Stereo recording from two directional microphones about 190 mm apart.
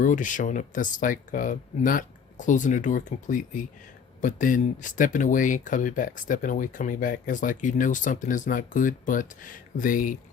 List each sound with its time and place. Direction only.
0.0 s speech: 40° left (ahead or behind)